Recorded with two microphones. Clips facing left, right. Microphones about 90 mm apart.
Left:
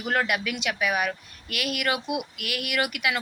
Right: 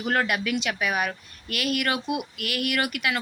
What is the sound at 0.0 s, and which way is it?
Speech, 5° left (ahead or behind).